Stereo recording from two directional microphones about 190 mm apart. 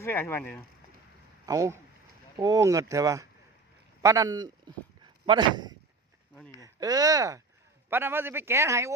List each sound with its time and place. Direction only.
0.0 s speech: 10° left (ahead or behind)
1.5 s a man's voice: 15° right (ahead or behind)